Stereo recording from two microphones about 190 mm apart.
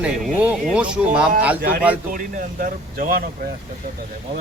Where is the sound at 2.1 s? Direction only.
45° right (ahead or behind).